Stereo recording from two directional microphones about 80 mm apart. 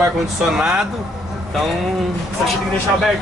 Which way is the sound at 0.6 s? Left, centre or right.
Centre.